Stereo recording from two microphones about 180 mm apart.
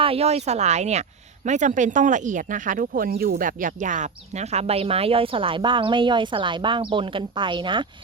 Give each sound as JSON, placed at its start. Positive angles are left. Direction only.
{"t": 0.0, "sound": "speech", "side_deg": -35}